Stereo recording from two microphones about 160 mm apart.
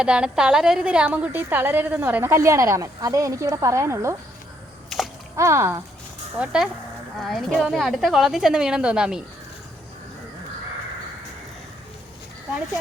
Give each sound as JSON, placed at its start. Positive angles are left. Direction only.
{"t": 0.0, "sound": "a woman's voice", "side_deg": -5}
{"t": 4.9, "sound": "a sound", "side_deg": 0}
{"t": 5.4, "sound": "speech", "side_deg": -20}
{"t": 6.4, "sound": "a woman's voice", "side_deg": -5}